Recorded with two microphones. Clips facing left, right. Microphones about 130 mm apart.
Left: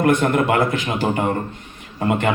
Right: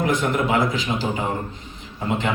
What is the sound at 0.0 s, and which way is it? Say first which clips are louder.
A man's voice: left 5 dB; 60° left (ahead or behind).